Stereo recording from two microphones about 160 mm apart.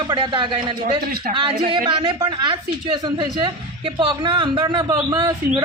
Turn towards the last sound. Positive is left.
turn(degrees=-25)  # may be behind; listen again after turning